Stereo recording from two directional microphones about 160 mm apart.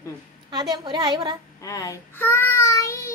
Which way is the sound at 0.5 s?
25° right (ahead or behind).